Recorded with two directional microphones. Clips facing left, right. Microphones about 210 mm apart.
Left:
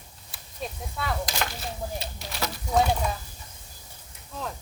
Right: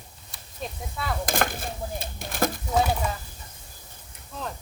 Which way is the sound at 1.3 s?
50° right (ahead or behind).